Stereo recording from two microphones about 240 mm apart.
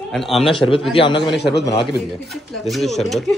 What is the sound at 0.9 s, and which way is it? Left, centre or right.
Speech, left.